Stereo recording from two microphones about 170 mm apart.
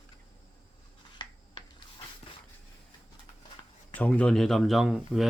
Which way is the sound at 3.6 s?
30° left (ahead or behind).